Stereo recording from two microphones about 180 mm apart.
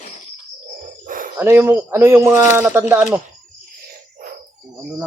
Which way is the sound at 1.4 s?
10° right (ahead or behind).